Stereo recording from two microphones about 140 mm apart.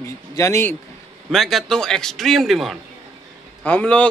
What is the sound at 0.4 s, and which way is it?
Speech, 20° left (ahead or behind).